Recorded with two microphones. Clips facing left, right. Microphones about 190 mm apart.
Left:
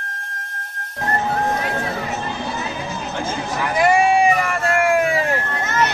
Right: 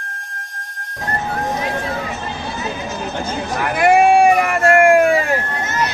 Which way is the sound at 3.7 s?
60° right (ahead or behind).